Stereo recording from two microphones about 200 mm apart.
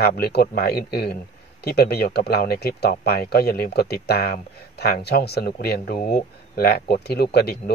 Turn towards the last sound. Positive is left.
turn(degrees=50)  # may be behind; listen again after turning